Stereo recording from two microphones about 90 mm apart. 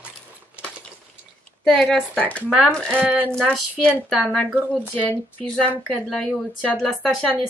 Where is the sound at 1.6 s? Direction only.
5° left (ahead or behind).